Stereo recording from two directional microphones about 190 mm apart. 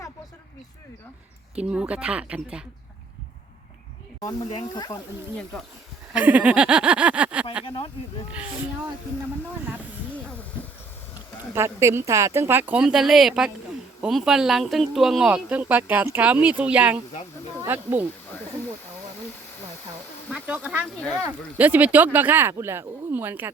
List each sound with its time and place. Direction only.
1.5 s speech: 5° right (ahead or behind)
4.2 s speech: 15° left (ahead or behind)
4.4 s speech: 35° left (ahead or behind)
4.7 s speech: 20° left (ahead or behind)
5.4 s speech: 5° left (ahead or behind)
6.1 s speech: 10° right (ahead or behind)
7.6 s speech: 30° left (ahead or behind)
11.5 s speech: 15° right (ahead or behind)
20.7 s speech: 5° right (ahead or behind)